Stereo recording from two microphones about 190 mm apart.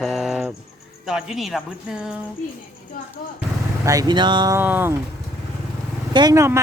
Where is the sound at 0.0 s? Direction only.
Centre (ahead or behind).